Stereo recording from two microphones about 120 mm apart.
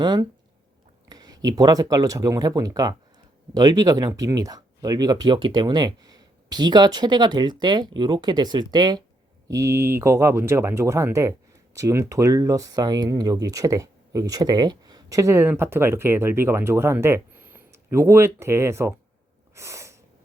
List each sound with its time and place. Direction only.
0.0 s speech: 35° right (ahead or behind)
9.5 s speech: 25° right (ahead or behind)
19.5 s sneeze: 25° right (ahead or behind)